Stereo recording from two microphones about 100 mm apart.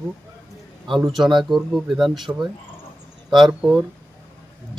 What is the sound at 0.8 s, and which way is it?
Speech, centre (ahead or behind).